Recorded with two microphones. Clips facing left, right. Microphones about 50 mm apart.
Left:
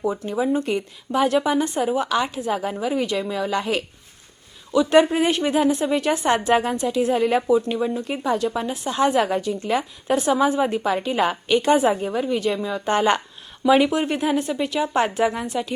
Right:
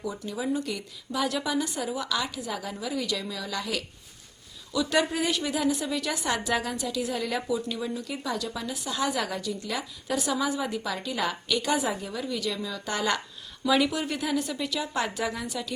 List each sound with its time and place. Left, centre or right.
0.0 s a woman's voice: left